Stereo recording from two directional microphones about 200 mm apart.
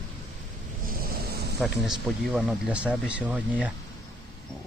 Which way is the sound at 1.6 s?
Centre (ahead or behind).